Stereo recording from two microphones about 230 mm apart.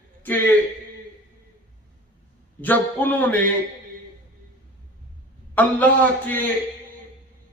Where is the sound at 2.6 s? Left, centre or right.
Centre.